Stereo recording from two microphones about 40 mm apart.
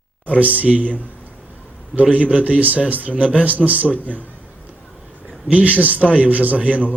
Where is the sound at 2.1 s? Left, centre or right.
Right.